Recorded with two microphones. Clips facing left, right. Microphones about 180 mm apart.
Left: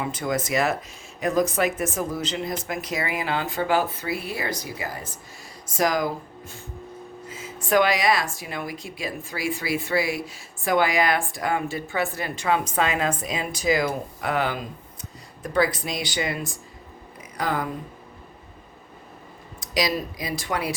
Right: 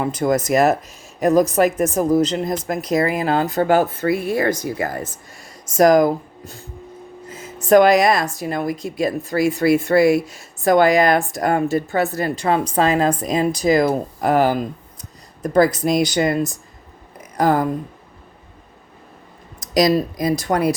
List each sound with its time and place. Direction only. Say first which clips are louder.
0.0 s speech: right 8 dB; 45° right (ahead or behind)
17.2 s a sound: right 9 dB; 45° right (ahead or behind)
19.5 s speech: right 9 dB; 40° right (ahead or behind)